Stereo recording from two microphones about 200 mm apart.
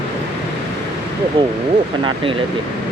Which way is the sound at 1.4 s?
25° right (ahead or behind).